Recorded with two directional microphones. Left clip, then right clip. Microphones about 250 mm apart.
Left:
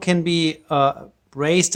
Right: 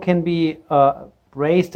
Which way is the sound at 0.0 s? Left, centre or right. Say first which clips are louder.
Right 1 dB; left.